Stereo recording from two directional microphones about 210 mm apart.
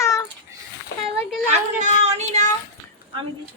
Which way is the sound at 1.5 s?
35° right (ahead or behind).